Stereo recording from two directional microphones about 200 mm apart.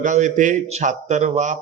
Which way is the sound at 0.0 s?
40° right (ahead or behind).